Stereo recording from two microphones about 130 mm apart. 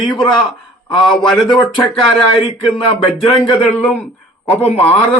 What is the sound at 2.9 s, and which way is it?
Speech, 40° left (ahead or behind).